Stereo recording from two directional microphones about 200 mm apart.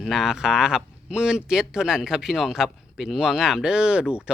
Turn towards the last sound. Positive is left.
turn(degrees=-5)  # may be behind; listen again after turning